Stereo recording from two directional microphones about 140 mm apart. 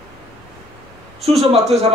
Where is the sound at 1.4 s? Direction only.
45° right (ahead or behind).